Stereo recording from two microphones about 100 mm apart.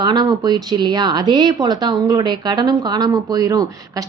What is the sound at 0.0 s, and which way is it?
A woman's voice, 45° right (ahead or behind).